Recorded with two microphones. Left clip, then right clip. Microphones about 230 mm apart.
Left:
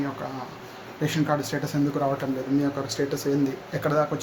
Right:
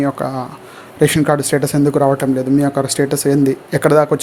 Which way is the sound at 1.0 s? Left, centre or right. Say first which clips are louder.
Right 12 dB; right.